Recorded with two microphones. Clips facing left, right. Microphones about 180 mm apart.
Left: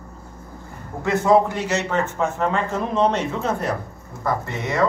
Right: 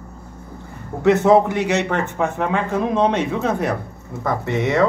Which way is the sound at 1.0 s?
70° right (ahead or behind).